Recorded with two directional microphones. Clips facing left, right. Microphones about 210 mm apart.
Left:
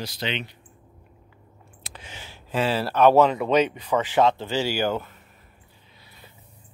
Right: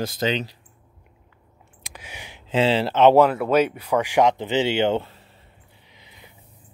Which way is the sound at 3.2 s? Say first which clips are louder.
Right 2 dB; 5° right (ahead or behind).